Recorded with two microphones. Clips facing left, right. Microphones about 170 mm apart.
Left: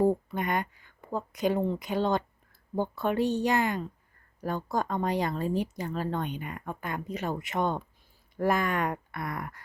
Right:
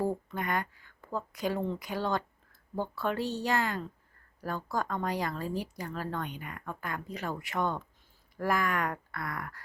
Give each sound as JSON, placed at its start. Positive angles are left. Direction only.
{"t": 0.3, "sound": "speech", "side_deg": 20}